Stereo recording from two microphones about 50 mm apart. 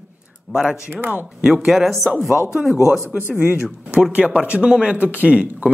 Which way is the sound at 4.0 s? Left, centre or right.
Right.